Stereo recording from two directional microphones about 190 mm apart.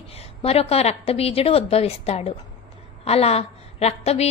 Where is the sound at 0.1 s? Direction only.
30° left (ahead or behind).